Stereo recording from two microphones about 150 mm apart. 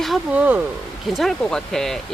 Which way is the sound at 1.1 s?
Centre (ahead or behind).